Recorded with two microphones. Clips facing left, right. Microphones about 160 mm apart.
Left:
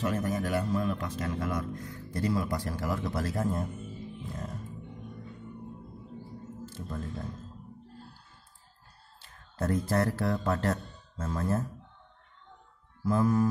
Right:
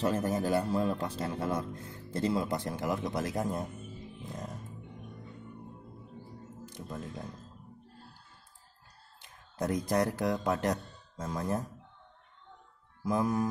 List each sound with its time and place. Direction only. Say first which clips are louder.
0.0 s a man's voice: right 1 dB; 30° right (ahead or behind)
6.6 s speech: left 2 dB; 15° right (ahead or behind)
9.2 s speech: left 1 dB; 15° right (ahead or behind)
13.0 s mantra: left 3 dB; 15° right (ahead or behind)